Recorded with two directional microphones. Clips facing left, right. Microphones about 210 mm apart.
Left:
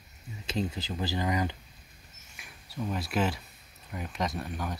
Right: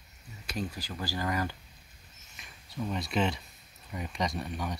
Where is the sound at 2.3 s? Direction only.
5° left (ahead or behind).